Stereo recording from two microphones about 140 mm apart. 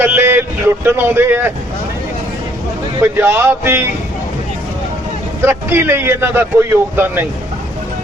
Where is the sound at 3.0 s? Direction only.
15° right (ahead or behind).